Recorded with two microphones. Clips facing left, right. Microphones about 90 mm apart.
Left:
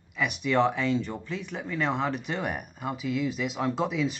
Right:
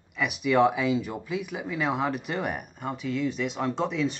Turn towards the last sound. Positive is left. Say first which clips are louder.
# even
turn(degrees=5)  # may be behind; listen again after turning